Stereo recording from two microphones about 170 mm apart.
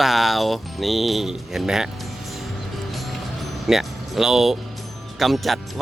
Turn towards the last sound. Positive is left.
turn(degrees=0)  # may be behind; listen again after turning